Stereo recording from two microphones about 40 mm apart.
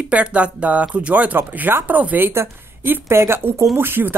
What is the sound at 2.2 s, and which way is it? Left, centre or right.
A woman's voice, right.